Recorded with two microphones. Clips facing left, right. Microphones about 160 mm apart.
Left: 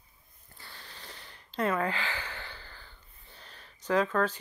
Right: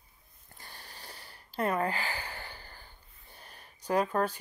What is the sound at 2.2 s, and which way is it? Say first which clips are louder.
Gasp: even; 10° right (ahead or behind).